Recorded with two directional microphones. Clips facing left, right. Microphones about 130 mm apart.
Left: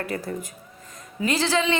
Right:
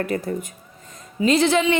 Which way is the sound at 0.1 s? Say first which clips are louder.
Right 5 dB; 20° right (ahead or behind).